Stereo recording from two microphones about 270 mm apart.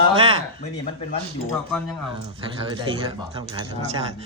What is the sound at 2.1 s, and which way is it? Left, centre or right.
Speech, centre.